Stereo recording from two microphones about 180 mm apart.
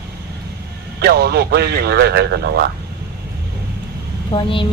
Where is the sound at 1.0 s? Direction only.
60° right (ahead or behind).